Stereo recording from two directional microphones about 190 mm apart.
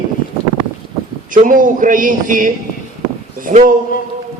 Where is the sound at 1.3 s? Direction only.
45° right (ahead or behind).